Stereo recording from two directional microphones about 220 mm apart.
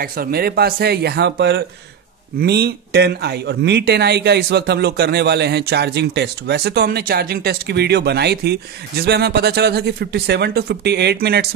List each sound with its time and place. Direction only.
0.0 s speech: 40° right (ahead or behind)